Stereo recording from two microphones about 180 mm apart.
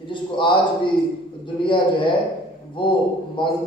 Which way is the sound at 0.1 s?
25° left (ahead or behind).